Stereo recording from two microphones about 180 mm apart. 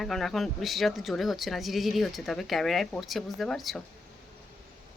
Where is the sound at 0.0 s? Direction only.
Centre (ahead or behind).